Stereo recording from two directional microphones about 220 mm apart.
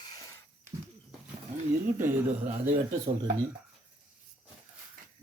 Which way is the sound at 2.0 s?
10° right (ahead or behind).